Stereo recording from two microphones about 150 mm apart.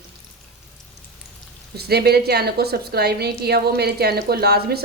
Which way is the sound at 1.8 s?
90° right.